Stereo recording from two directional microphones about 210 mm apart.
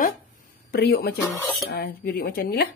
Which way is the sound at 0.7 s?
50° left (ahead or behind).